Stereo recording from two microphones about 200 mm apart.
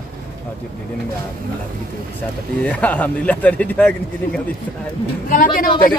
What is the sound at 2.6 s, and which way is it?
Speech, 5° left (ahead or behind).